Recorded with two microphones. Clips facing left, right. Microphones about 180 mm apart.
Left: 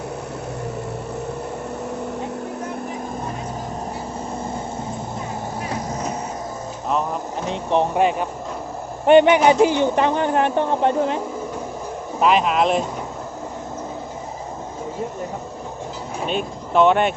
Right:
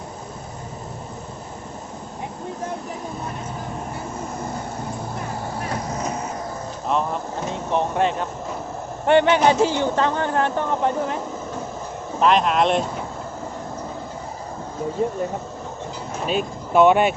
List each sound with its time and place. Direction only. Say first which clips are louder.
6.8 s vehicle: even; centre (ahead or behind)
7.5 s speech: left 4 dB; 20° left (ahead or behind)
12.2 s speech: even; 5° left (ahead or behind)
16.2 s speech: right 1 dB; 5° right (ahead or behind)